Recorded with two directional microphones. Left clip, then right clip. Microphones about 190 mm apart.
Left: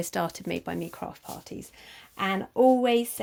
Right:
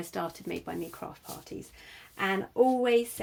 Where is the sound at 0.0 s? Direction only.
55° left (ahead or behind).